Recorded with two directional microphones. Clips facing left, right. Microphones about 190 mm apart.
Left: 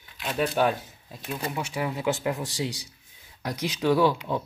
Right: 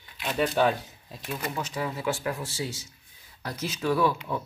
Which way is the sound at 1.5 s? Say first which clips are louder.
Left 2 dB; 10° left (ahead or behind).